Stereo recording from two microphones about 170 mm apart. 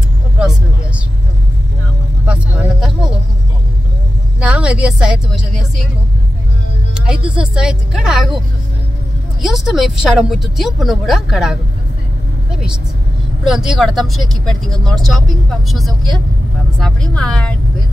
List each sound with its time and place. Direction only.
2.2 s vehicle: 5° right (ahead or behind)
4.4 s a woman's voice: 5° right (ahead or behind)
6.9 s speech: 5° right (ahead or behind)
9.4 s speech: centre (ahead or behind)